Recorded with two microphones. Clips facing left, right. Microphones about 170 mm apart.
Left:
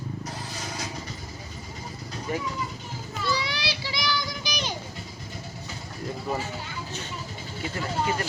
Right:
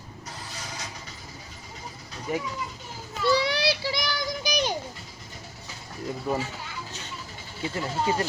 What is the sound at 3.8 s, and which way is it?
Child singing, 50° right (ahead or behind).